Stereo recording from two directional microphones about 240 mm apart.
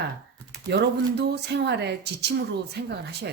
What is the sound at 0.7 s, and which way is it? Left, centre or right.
Speech, right.